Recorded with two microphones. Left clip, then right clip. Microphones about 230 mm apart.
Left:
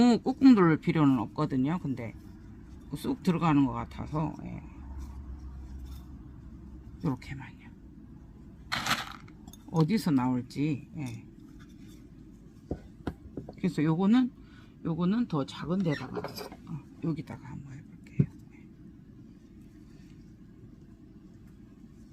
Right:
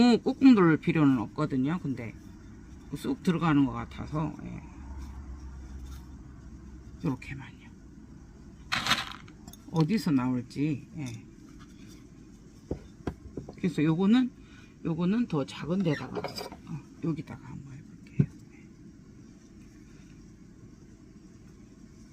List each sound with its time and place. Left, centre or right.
0.0 s speech: centre
7.0 s speech: left
8.7 s a sound: centre
9.8 s speech: left
12.6 s a sound: centre
13.6 s speech: centre
16.0 s speech: centre
16.6 s speech: centre